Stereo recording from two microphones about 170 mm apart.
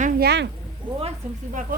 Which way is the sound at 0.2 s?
75° right (ahead or behind).